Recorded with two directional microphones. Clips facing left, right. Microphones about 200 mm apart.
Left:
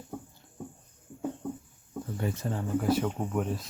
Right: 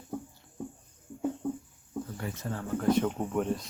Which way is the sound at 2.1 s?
25° left (ahead or behind).